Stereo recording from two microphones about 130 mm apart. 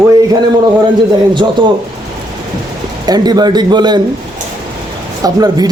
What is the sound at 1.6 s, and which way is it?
Speech, 35° right (ahead or behind).